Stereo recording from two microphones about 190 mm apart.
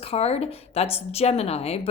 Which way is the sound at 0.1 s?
30° left (ahead or behind).